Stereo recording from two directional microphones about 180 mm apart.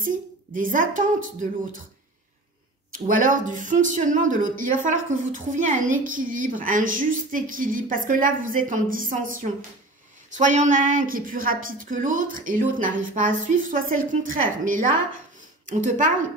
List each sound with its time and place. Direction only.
0.0 s speech: 50° right (ahead or behind)
3.1 s speech: 45° right (ahead or behind)